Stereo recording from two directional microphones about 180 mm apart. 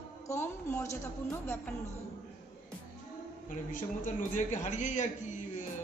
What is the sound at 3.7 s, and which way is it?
A man's voice, 45° left (ahead or behind).